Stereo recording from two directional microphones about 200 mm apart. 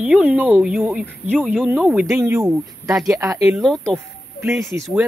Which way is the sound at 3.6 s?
Centre (ahead or behind).